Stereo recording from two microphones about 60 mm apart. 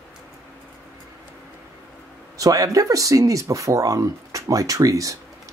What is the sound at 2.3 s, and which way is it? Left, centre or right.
Speech, right.